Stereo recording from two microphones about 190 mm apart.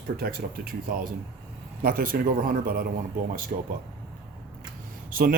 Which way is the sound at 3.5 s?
35° right (ahead or behind).